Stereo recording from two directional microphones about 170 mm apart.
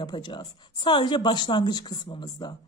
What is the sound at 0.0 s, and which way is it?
Speech, 25° left (ahead or behind).